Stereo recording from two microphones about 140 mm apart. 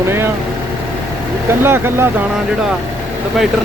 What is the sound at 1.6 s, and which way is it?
Speech, 15° right (ahead or behind).